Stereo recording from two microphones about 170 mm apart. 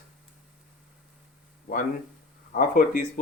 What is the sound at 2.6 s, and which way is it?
Speech, 55° left (ahead or behind).